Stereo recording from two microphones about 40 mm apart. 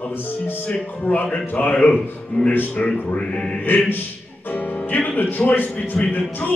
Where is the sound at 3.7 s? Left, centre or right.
Left.